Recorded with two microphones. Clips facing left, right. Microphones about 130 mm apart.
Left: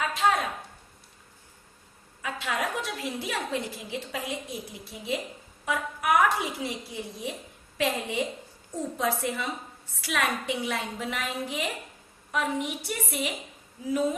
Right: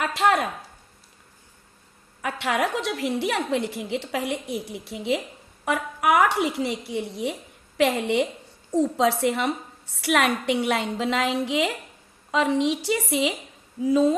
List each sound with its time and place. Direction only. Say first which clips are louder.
0.0 s speech: right 4 dB; 75° right (ahead or behind)
2.2 s a woman's voice: right 6 dB; 70° right (ahead or behind)
8.7 s a woman's voice: right 8 dB; 85° right